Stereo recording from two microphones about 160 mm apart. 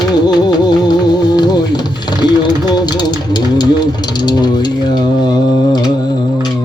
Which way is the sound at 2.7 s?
25° left (ahead or behind).